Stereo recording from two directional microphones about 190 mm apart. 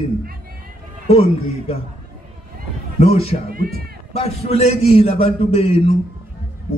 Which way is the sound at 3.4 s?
50° right (ahead or behind).